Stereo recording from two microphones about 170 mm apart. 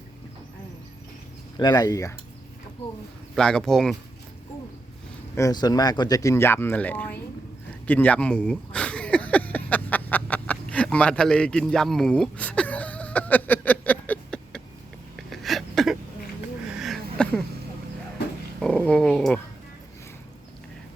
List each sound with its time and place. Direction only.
1.5 s speech: 25° left (ahead or behind)
3.3 s speech: 5° left (ahead or behind)
5.3 s speech: 20° left (ahead or behind)
7.9 s a sound: 10° left (ahead or behind)
18.6 s dog: 5° left (ahead or behind)